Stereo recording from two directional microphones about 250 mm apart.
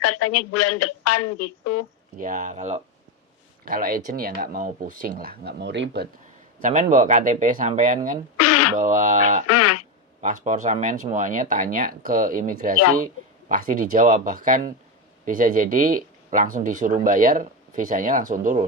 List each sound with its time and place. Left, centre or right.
0.0 s a woman's voice: left
2.1 s speech: right
6.6 s speech: right
8.4 s radio: left
8.7 s speech: right
9.5 s speech: left
10.2 s speech: right